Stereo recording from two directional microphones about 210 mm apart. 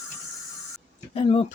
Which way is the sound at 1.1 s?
30° left (ahead or behind).